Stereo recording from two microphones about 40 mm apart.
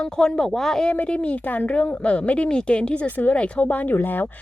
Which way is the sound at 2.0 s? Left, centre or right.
Left.